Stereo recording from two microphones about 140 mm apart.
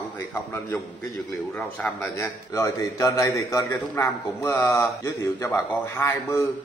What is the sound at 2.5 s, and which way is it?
A man's voice, 20° left (ahead or behind).